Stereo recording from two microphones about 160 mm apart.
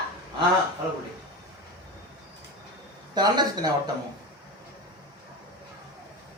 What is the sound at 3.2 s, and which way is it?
Speech, 25° right (ahead or behind).